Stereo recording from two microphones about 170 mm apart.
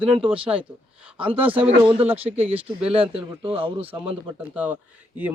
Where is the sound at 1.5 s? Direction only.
35° right (ahead or behind).